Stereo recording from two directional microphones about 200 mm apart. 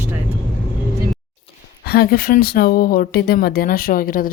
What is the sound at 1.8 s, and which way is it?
Speech, 50° left (ahead or behind).